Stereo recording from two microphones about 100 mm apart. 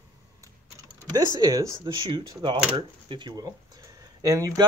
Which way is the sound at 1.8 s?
55° right (ahead or behind).